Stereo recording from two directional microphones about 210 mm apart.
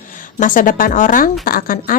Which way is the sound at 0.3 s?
40° left (ahead or behind).